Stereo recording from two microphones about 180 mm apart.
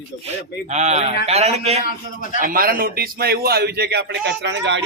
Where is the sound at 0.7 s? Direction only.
40° right (ahead or behind).